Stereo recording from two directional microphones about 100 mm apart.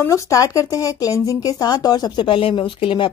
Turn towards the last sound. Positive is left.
turn(degrees=60)  # may be behind; listen again after turning